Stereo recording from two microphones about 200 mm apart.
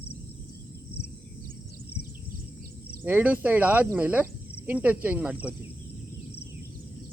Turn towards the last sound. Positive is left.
turn(degrees=-10)  # may be behind; listen again after turning